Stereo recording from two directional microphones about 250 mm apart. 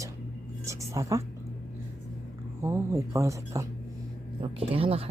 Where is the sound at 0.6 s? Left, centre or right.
Centre.